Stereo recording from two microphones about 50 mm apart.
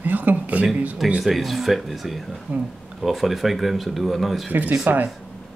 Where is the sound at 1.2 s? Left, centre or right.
Centre.